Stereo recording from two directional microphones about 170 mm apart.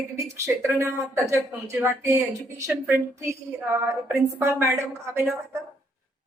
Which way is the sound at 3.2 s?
15° right (ahead or behind).